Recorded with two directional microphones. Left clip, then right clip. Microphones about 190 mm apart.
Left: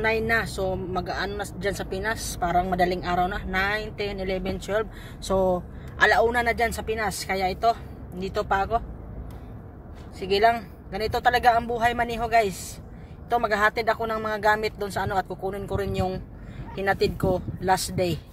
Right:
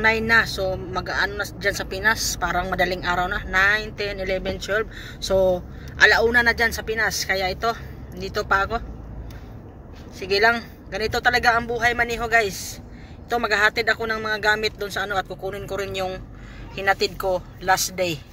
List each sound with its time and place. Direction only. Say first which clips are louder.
0.0 s speech: right 6 dB; 10° left (ahead or behind)
10.2 s speech: right 2 dB; 15° left (ahead or behind)